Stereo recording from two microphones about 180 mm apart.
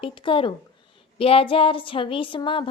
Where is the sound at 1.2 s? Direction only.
30° left (ahead or behind).